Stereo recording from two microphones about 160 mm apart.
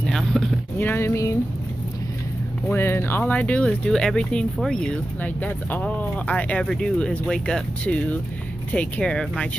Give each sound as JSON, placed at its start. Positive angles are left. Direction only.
{"t": 0.0, "sound": "speech", "side_deg": 0}
{"t": 0.7, "sound": "speech", "side_deg": 15}
{"t": 2.7, "sound": "speech", "side_deg": 15}